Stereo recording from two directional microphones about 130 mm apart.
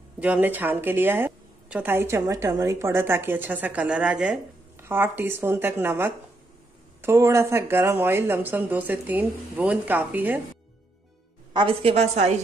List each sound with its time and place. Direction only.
0.2 s a woman's voice: 15° right (ahead or behind)
11.5 s a woman's voice: 45° right (ahead or behind)